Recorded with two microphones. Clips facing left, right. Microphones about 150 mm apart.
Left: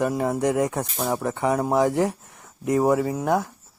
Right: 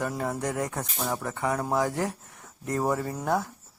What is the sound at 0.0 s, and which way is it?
Speech, 20° left (ahead or behind).